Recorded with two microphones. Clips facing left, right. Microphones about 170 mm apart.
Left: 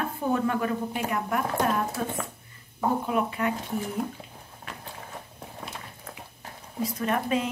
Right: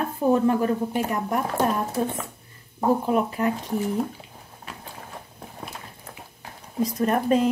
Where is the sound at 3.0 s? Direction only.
40° right (ahead or behind).